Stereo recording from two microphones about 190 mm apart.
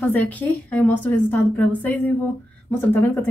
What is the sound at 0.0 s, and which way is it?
A woman's voice, 10° left (ahead or behind).